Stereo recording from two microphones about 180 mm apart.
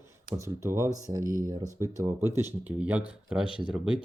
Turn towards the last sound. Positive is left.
turn(degrees=-5)  # may be behind; listen again after turning